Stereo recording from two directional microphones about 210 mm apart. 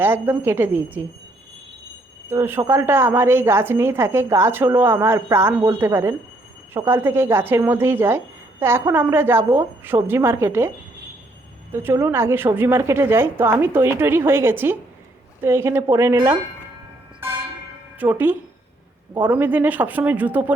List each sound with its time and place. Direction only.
0.0 s a woman's voice: 10° right (ahead or behind)
2.3 s a woman's voice: 10° right (ahead or behind)
11.7 s a woman's voice: 10° right (ahead or behind)
16.1 s speech: 20° right (ahead or behind)
18.0 s a woman's voice: 10° right (ahead or behind)